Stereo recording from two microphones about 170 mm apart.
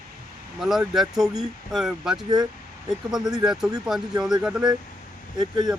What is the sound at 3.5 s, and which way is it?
Speech, 5° right (ahead or behind).